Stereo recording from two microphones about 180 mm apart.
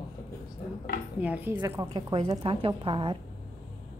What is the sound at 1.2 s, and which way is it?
Speech, 10° right (ahead or behind).